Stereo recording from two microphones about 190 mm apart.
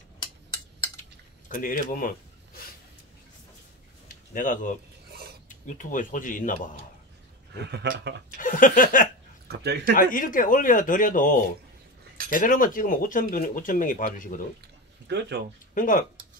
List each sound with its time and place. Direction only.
1.5 s speech: 45° left (ahead or behind)
4.1 s speech: 45° left (ahead or behind)
7.5 s speech: 60° right (ahead or behind)
8.4 s speech: 45° left (ahead or behind)
9.5 s speech: 60° right (ahead or behind)
9.9 s speech: 45° left (ahead or behind)
15.0 s speech: 65° right (ahead or behind)
15.7 s speech: 45° left (ahead or behind)